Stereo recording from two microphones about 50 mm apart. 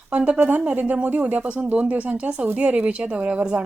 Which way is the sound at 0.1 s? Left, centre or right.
Right.